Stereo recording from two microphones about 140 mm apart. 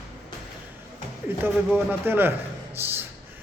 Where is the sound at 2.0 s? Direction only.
15° right (ahead or behind).